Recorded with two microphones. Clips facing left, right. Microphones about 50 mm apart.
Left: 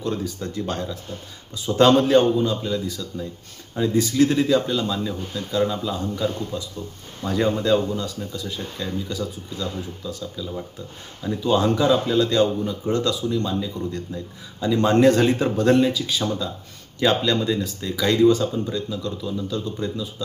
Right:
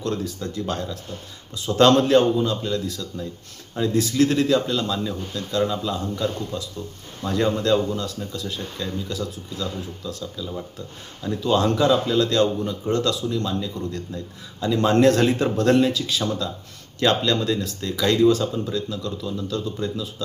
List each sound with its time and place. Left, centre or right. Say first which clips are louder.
0.0 s speech: even; centre
0.3 s speech: even; left
0.6 s speech: even; centre